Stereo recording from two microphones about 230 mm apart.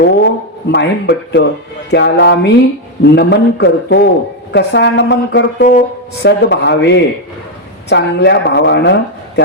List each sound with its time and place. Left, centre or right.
0.0 s speech: left